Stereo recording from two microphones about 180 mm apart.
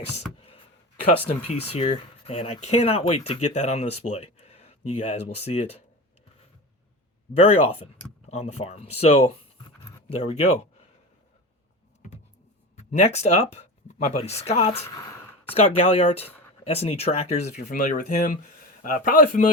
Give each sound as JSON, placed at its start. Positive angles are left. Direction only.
{"t": 0.3, "sound": "a sound", "side_deg": 30}
{"t": 1.3, "sound": "speech", "side_deg": 35}
{"t": 7.3, "sound": "speech", "side_deg": 35}
{"t": 12.7, "sound": "speech", "side_deg": 40}
{"t": 14.8, "sound": "a sound", "side_deg": 10}
{"t": 15.5, "sound": "a man's voice", "side_deg": 35}